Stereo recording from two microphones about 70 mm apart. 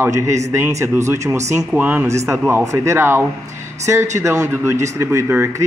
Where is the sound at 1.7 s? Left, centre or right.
Right.